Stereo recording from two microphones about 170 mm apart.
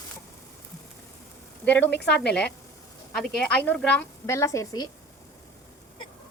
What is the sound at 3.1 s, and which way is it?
A woman's voice, 5° left (ahead or behind).